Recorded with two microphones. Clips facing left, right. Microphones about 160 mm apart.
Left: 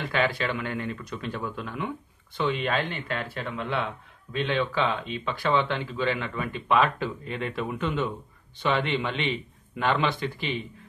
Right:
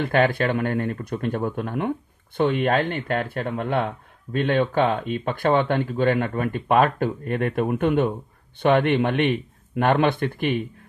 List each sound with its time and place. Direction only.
0.0 s a man's voice: 55° right (ahead or behind)